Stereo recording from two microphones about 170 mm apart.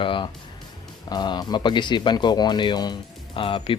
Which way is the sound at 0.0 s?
30° left (ahead or behind).